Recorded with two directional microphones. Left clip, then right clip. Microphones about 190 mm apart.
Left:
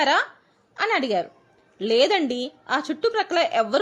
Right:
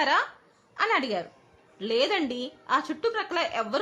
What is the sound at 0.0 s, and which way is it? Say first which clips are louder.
A woman's voice: left 4 dB; 25° left (ahead or behind).